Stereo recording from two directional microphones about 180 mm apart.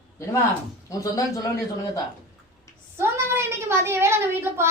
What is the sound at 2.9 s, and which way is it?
A woman's voice, 15° right (ahead or behind).